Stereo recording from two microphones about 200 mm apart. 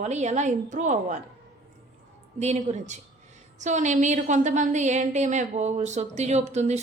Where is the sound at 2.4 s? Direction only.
35° right (ahead or behind).